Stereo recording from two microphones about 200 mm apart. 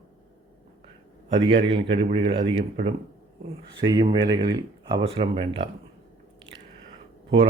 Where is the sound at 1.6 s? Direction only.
25° right (ahead or behind).